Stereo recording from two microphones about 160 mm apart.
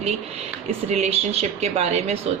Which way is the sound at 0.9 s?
45° right (ahead or behind).